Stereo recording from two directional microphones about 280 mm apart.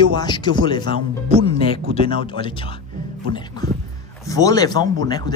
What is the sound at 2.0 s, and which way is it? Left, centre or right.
Speech, centre.